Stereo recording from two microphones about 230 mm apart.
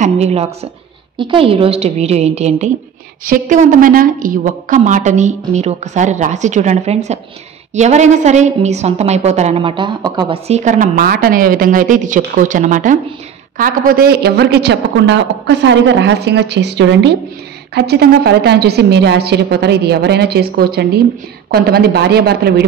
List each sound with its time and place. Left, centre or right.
0.0 s a woman's voice: right